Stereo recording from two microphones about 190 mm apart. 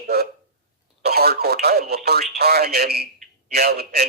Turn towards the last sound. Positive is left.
turn(degrees=-55)  # may be behind; listen again after turning